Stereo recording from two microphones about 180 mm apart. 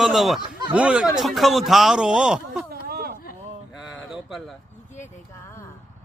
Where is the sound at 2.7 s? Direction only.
55° right (ahead or behind).